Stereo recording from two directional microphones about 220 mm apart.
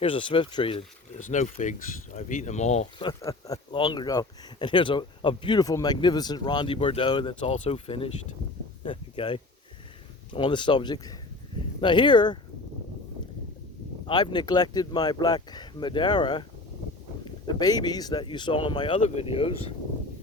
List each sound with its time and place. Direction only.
0.0 s speech: 25° left (ahead or behind)
1.2 s speech: 35° left (ahead or behind)
3.1 s speech: 15° left (ahead or behind)
8.8 s a sound: 25° left (ahead or behind)
10.3 s speech: 20° left (ahead or behind)
14.1 s speech: 20° left (ahead or behind)